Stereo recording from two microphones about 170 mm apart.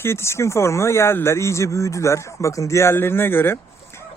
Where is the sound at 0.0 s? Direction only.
15° left (ahead or behind).